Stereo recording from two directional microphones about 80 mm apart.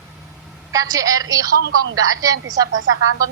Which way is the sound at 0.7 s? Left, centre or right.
Right.